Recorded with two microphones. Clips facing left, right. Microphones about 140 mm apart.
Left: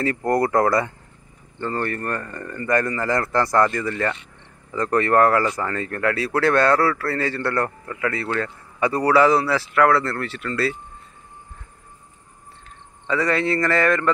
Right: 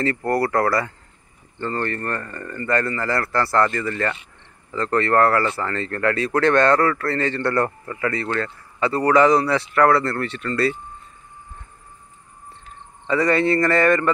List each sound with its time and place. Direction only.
0.0 s speech: 15° left (ahead or behind)
1.6 s speech: 10° left (ahead or behind)
13.0 s speech: centre (ahead or behind)